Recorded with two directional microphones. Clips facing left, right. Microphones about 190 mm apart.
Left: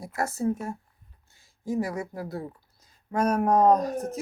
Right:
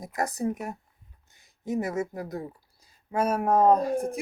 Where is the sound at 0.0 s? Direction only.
15° right (ahead or behind).